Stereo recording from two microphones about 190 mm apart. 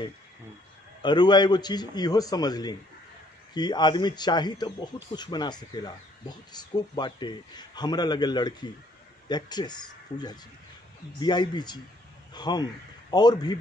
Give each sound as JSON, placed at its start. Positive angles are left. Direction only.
{"t": 1.0, "sound": "a man's voice", "side_deg": 25}